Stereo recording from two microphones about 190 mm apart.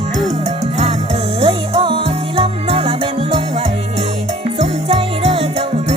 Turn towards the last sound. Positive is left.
turn(degrees=-30)  # may be behind; listen again after turning